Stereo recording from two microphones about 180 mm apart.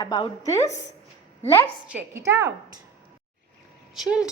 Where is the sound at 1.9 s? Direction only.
10° right (ahead or behind).